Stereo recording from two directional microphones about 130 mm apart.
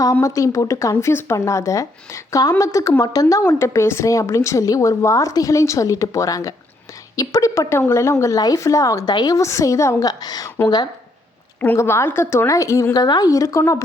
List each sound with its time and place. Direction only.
0.0 s speech: 25° left (ahead or behind)
11.6 s speech: 15° left (ahead or behind)